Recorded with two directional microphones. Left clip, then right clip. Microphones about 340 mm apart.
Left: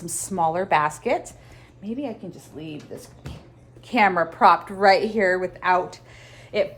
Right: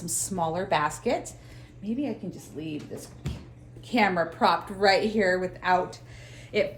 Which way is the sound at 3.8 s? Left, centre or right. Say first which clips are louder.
Left 5 dB; centre.